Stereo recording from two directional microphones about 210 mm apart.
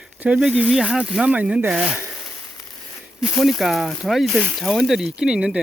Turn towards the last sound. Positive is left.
turn(degrees=-5)  # may be behind; listen again after turning